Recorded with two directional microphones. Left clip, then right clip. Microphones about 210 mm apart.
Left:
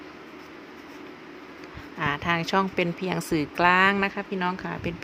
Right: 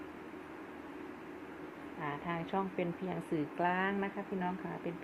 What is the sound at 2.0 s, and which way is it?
A woman's voice, 55° left (ahead or behind).